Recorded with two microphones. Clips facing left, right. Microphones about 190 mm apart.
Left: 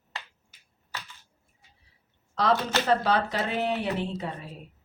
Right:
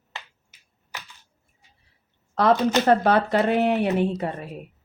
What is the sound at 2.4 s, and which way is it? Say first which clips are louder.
A woman's voice: right 6 dB; 55° right (ahead or behind).